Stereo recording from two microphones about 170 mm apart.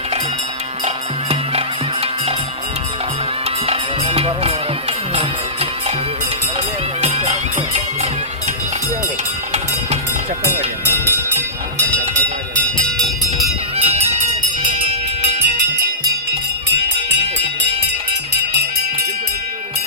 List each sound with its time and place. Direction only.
1.3 s music: 35° right (ahead or behind)
3.7 s music: 35° right (ahead or behind)
7.0 s music: 40° right (ahead or behind)
13.7 s run: 35° right (ahead or behind)
14.6 s music: 35° right (ahead or behind)